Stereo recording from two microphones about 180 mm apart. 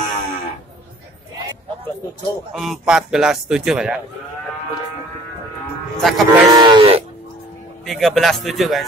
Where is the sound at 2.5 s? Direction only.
Centre (ahead or behind).